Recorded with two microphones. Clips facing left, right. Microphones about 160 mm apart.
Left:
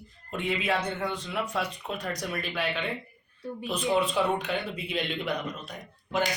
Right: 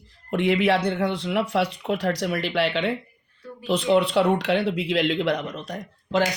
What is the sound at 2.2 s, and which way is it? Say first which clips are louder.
Speech: right 8 dB; 85° right.